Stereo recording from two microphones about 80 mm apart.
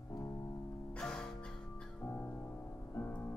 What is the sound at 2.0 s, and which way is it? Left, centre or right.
Music, left.